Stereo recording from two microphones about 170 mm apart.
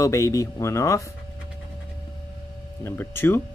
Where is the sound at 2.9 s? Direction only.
15° left (ahead or behind).